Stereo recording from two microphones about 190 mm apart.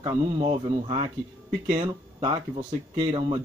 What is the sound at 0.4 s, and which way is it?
Speech, 30° right (ahead or behind).